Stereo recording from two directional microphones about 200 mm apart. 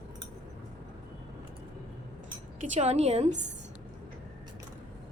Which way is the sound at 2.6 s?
35° right (ahead or behind).